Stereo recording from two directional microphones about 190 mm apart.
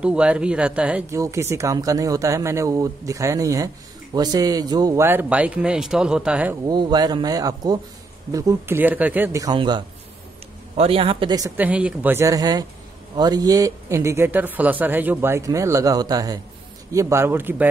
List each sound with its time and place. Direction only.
0.0 s speech: 5° right (ahead or behind)
6.6 s speech: 20° right (ahead or behind)
11.5 s speech: 5° right (ahead or behind)